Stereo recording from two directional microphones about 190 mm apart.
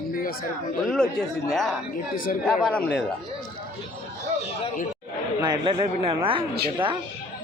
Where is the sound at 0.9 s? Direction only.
5° left (ahead or behind).